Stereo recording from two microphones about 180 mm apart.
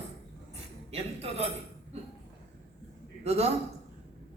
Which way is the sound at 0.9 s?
35° right (ahead or behind).